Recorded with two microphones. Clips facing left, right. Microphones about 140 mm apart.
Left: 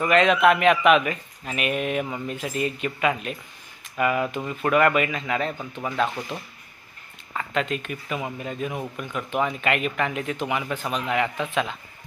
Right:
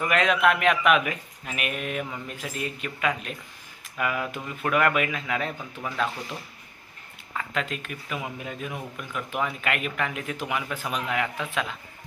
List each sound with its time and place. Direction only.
0.0 s speech: 5° right (ahead or behind)
5.6 s speech: 15° left (ahead or behind)
7.3 s speech: centre (ahead or behind)